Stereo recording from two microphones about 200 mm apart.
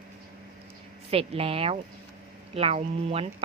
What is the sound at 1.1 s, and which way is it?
A woman's voice, 30° right (ahead or behind).